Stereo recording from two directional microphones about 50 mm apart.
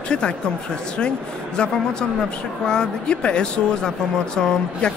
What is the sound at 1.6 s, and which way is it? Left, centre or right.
A woman's voice, centre.